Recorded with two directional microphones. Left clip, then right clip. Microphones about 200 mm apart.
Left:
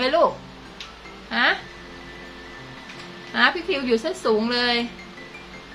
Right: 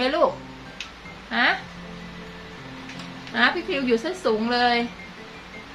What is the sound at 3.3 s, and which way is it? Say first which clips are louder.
Speech: left 1 dB; 20° left (ahead or behind).